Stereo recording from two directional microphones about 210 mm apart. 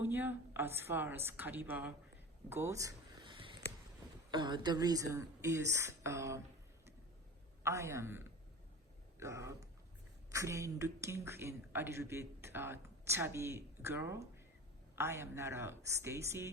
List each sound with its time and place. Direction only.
0.0 s a woman's voice: 10° right (ahead or behind)
2.5 s a sound: 15° right (ahead or behind)
4.3 s a woman's voice: 20° right (ahead or behind)
7.6 s a woman's voice: 15° right (ahead or behind)